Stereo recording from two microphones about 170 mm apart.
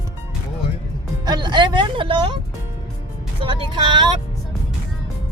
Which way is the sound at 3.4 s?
30° right (ahead or behind).